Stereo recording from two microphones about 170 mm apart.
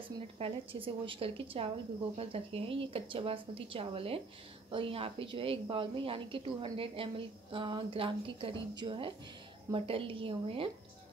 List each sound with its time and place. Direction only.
0.4 s a woman's voice: 30° right (ahead or behind)